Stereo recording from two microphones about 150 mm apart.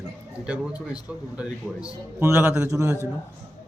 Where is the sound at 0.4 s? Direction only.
10° right (ahead or behind).